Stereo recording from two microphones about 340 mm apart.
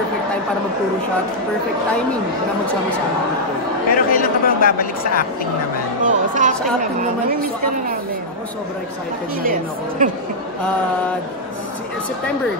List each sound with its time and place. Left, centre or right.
3.9 s speech: left
6.0 s speech: right
9.4 s speech: right